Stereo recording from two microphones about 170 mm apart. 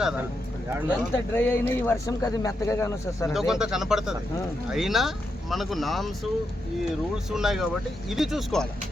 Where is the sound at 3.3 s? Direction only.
5° right (ahead or behind).